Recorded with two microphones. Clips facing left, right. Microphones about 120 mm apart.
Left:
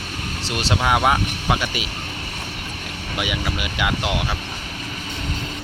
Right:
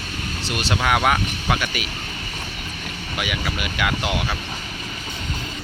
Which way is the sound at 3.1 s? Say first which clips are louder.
Left 1 dB; 20° left (ahead or behind).